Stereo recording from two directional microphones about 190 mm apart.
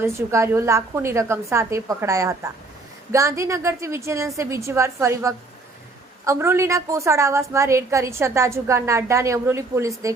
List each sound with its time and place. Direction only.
0.0 s a woman's voice: 15° right (ahead or behind)